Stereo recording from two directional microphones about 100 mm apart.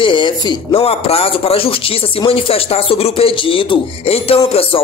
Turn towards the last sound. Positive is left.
turn(degrees=75)  # may be behind; listen again after turning